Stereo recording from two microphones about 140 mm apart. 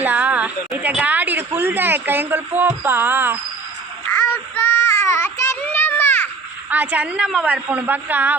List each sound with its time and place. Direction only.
0.0 s a woman's voice: 10° right (ahead or behind)
4.3 s child singing: 15° left (ahead or behind)
6.7 s speech: 10° right (ahead or behind)